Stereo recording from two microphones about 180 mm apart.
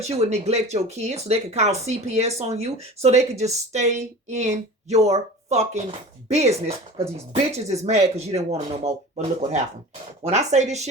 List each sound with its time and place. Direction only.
0.0 s speech: 35° right (ahead or behind)